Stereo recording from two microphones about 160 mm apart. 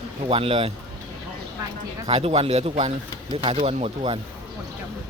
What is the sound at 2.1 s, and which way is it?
Speech, 35° right (ahead or behind).